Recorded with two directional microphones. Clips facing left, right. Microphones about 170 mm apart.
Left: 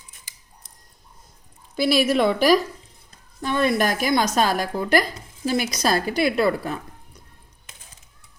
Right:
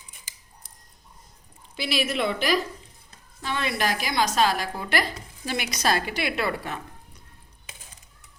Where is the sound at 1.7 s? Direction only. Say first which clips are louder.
Left 8 dB; 40° left (ahead or behind).